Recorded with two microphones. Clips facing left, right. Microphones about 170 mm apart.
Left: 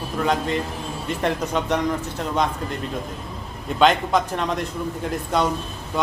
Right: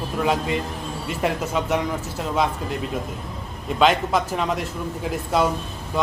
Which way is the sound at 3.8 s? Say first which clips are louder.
Left 1 dB; 5° right (ahead or behind).